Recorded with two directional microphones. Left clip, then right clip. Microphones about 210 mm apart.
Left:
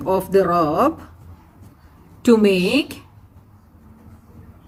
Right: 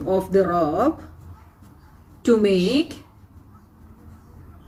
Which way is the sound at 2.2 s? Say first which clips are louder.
Left 3 dB; 40° left (ahead or behind).